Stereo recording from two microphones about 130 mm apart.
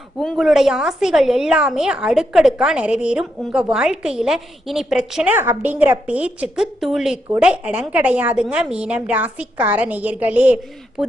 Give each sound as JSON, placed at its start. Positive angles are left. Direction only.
{"t": 0.2, "sound": "a woman's voice", "side_deg": 0}